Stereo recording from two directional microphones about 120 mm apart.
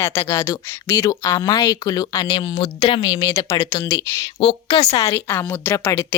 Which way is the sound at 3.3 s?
25° left (ahead or behind).